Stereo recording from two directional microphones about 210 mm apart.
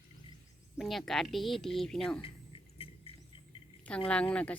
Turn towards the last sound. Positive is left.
turn(degrees=5)  # may be behind; listen again after turning